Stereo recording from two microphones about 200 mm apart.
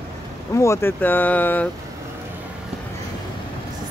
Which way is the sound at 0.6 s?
15° left (ahead or behind).